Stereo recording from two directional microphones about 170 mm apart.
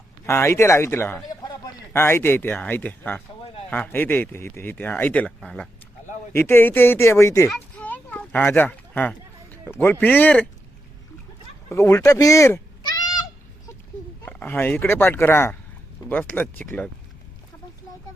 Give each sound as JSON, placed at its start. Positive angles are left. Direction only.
{"t": 0.3, "sound": "a man's voice", "side_deg": 15}
{"t": 7.5, "sound": "a sound", "side_deg": 10}
{"t": 11.7, "sound": "goat", "side_deg": 15}
{"t": 14.3, "sound": "speech", "side_deg": 10}